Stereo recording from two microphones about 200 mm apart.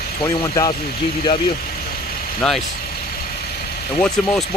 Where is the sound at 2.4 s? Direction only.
5° left (ahead or behind).